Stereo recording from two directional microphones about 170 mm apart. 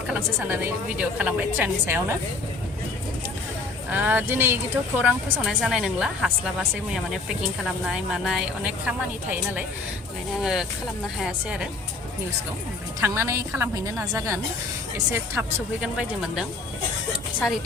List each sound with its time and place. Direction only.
0.1 s a woman's voice: 10° right (ahead or behind)
3.9 s a woman's voice: 10° right (ahead or behind)
13.0 s a woman's voice: 15° right (ahead or behind)
14.9 s a woman's voice: 10° right (ahead or behind)
17.1 s a sound: centre (ahead or behind)